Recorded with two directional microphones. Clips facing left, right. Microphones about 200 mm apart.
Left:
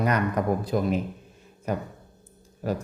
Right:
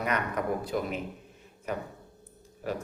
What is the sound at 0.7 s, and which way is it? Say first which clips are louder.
Speech: left 6 dB; 40° left (ahead or behind).